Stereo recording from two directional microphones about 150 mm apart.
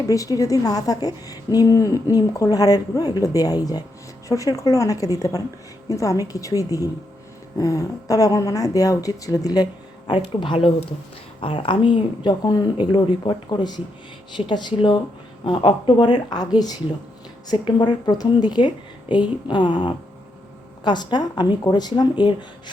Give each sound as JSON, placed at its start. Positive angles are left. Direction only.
{"t": 0.1, "sound": "a woman's voice", "side_deg": 20}
{"t": 17.5, "sound": "a woman's voice", "side_deg": 30}